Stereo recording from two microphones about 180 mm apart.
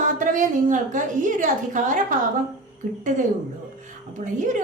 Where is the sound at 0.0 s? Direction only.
45° right (ahead or behind).